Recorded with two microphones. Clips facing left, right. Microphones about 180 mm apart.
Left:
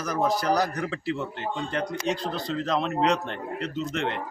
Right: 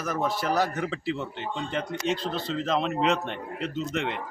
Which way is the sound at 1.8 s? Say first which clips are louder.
Even; 40° left (ahead or behind).